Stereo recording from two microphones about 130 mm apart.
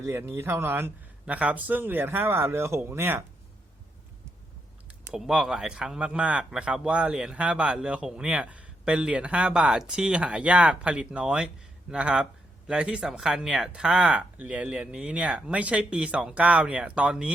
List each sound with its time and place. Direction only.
0.0 s speech: 20° right (ahead or behind)
5.1 s speech: 5° right (ahead or behind)